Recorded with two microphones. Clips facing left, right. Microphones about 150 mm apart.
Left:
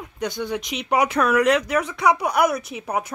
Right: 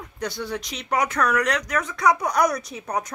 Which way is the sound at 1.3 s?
10° left (ahead or behind).